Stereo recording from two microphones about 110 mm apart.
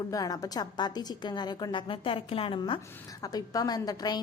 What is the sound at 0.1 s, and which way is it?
A woman's voice, 35° left (ahead or behind).